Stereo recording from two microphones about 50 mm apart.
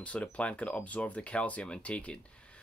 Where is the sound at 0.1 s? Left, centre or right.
Left.